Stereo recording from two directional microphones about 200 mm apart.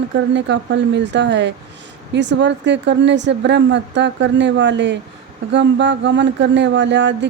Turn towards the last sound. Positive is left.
turn(degrees=-65)  # may be behind; listen again after turning